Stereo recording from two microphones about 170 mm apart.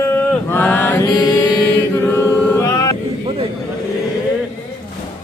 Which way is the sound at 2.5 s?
20° left (ahead or behind).